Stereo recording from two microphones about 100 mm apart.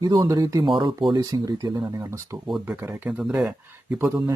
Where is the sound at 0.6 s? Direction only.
55° right (ahead or behind).